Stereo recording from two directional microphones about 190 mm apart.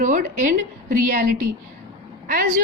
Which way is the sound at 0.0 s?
45° right (ahead or behind).